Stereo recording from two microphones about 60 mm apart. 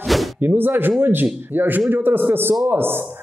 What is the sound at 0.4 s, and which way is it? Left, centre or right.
Speech, right.